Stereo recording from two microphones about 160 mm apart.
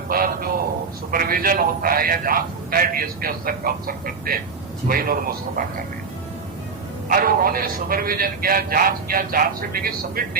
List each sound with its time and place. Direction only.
0.1 s a sound: 65° right (ahead or behind)
1.1 s a man's voice: 65° right (ahead or behind)
7.1 s a man's voice: 65° right (ahead or behind)